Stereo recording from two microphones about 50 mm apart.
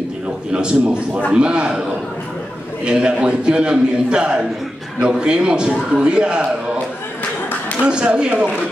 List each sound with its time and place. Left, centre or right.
0.5 s a man's voice: centre
7.8 s a man's voice: right